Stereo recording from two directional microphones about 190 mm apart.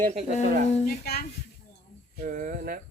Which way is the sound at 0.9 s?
55° left (ahead or behind).